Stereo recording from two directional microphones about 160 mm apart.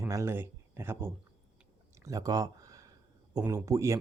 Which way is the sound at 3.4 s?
20° right (ahead or behind).